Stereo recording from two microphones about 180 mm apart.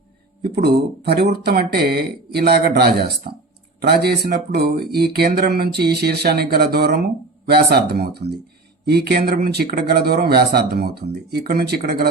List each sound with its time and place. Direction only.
0.5 s speech: 65° right (ahead or behind)